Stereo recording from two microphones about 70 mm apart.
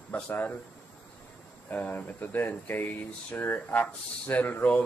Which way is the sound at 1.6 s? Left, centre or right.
Left.